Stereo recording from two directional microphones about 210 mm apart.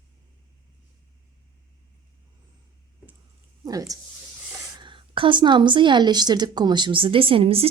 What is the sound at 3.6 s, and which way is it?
A woman's voice, 15° right (ahead or behind).